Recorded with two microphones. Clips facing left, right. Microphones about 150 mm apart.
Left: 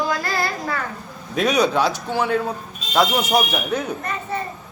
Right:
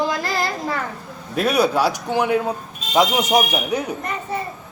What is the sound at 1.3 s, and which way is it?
Speech, 5° right (ahead or behind).